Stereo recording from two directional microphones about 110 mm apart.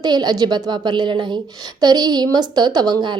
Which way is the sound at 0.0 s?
40° right (ahead or behind).